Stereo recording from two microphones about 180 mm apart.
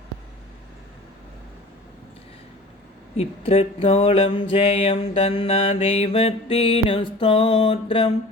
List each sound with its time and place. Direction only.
3.2 s mantra: 35° left (ahead or behind)